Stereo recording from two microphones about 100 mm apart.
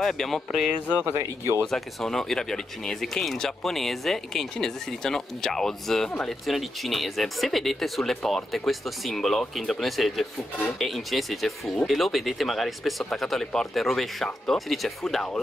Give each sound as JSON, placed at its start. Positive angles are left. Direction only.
{"t": 0.0, "sound": "speech", "side_deg": 0}
{"t": 1.1, "sound": "speech", "side_deg": -30}
{"t": 1.6, "sound": "speech", "side_deg": 0}